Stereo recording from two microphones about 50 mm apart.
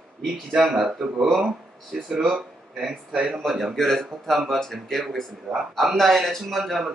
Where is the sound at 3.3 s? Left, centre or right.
Centre.